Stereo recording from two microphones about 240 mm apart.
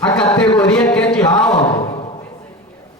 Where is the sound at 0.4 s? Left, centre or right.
Centre.